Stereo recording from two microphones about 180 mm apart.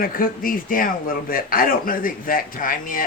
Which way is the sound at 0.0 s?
50° left (ahead or behind).